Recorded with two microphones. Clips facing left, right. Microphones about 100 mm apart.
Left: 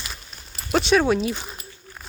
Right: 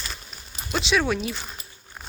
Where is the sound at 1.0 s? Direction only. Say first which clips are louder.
Left 5 dB; 25° left (ahead or behind).